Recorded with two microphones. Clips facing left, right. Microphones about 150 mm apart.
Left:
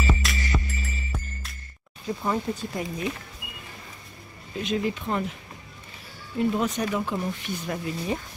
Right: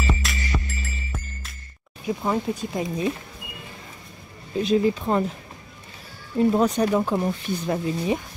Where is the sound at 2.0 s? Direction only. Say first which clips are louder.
Right 3 dB; 15° right (ahead or behind).